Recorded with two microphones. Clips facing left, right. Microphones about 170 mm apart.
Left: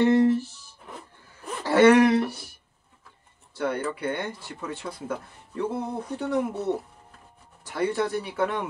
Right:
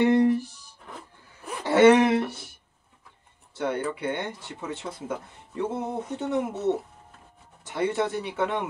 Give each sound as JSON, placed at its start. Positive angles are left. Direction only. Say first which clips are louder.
{"t": 0.0, "sound": "music", "louder": "left 1 dB", "side_deg": -15}
{"t": 1.6, "sound": "a sound", "louder": "even", "side_deg": -20}
{"t": 3.5, "sound": "speech", "louder": "even", "side_deg": -20}